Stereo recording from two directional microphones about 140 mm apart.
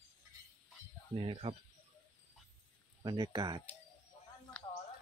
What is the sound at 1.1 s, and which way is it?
Speech, 40° right (ahead or behind).